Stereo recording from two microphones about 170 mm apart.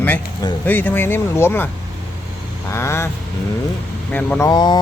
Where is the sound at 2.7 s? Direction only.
15° left (ahead or behind).